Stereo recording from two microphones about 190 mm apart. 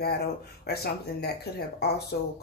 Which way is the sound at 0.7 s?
60° left (ahead or behind).